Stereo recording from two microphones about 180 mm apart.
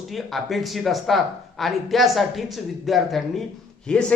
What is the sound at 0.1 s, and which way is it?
Speech, centre (ahead or behind).